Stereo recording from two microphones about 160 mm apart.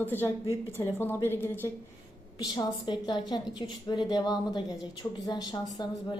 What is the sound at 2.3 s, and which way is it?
A woman's voice, 25° left (ahead or behind).